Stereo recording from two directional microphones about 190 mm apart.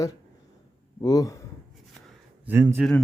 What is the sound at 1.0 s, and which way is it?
Speech, 20° left (ahead or behind).